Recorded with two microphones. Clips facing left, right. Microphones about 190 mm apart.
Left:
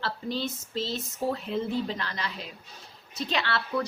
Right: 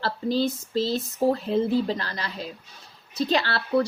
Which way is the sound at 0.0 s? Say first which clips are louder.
Right 7 dB; 35° right (ahead or behind).